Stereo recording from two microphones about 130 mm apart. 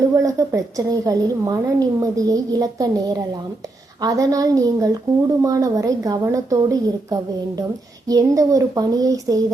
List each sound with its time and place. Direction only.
0.2 s a woman's voice: 25° right (ahead or behind)